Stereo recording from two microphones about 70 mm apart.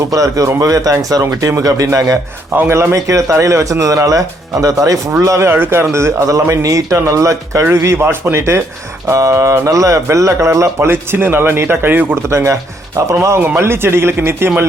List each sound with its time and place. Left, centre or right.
0.1 s speech: right
1.2 s speech: right
2.6 s speech: right
2.9 s speech: right
5.5 s speech: right
10.8 s speech: right
12.3 s speech: right
13.6 s speech: right